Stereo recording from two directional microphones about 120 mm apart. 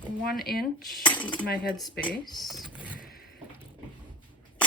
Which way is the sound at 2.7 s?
10° right (ahead or behind).